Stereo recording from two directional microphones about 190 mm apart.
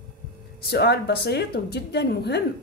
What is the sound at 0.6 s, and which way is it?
Speech, 60° left (ahead or behind).